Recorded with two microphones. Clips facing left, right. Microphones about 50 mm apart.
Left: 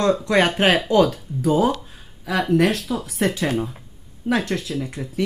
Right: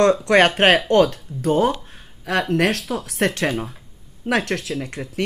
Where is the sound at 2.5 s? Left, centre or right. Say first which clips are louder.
Left 4 dB; right.